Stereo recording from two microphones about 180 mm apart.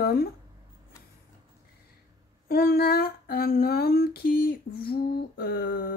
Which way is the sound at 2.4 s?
55° left (ahead or behind).